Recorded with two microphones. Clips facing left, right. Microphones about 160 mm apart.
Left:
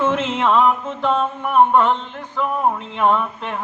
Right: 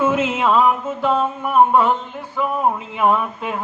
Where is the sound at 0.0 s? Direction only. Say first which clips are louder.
Right 1 dB; 5° right (ahead or behind).